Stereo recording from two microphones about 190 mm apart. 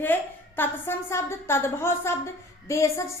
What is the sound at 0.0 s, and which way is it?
A woman's voice, 10° left (ahead or behind).